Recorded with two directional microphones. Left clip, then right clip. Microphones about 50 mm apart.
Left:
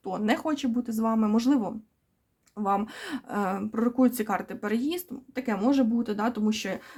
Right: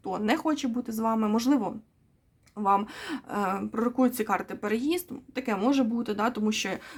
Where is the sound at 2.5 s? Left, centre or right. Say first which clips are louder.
Right 3 dB; centre.